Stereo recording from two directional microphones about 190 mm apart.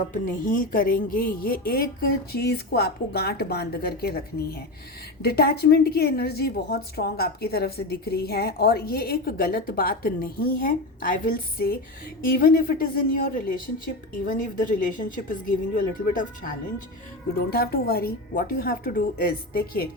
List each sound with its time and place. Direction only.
0.1 s a woman's voice: 45° left (ahead or behind)
5.2 s a woman's voice: 55° left (ahead or behind)
17.5 s a woman's voice: 50° left (ahead or behind)